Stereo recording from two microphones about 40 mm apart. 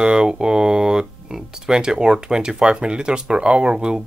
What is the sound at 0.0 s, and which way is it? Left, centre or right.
Speech, right.